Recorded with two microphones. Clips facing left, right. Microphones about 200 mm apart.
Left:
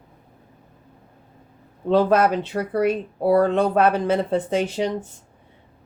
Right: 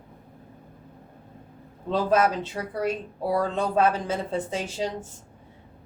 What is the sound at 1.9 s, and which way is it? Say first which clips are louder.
Speech: left 5 dB; 65° left (ahead or behind).